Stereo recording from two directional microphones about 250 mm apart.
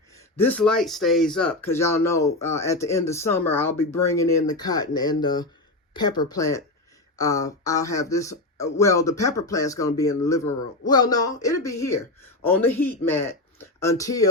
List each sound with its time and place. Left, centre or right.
0.3 s speech: centre